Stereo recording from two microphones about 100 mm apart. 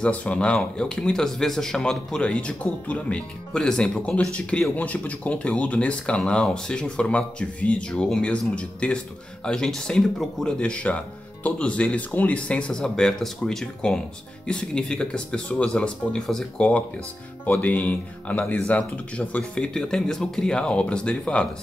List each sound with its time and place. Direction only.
0.0 s speech: 15° left (ahead or behind)